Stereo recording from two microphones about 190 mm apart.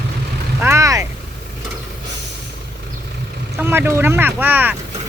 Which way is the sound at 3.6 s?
10° right (ahead or behind).